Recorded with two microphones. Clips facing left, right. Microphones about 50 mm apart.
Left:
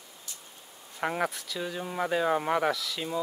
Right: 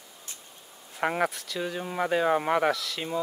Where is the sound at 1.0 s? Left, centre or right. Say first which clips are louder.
Right 3 dB; centre.